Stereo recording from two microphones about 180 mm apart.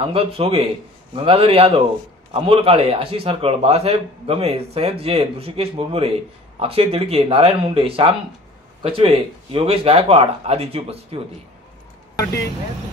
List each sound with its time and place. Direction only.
0.1 s a man's voice: 30° right (ahead or behind)